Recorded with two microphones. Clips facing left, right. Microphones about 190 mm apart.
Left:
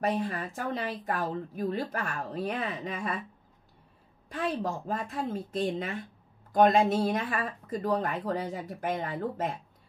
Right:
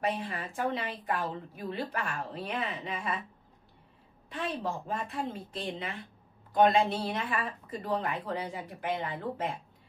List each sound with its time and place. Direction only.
0.0 s speech: 45° left (ahead or behind)
4.3 s speech: 40° left (ahead or behind)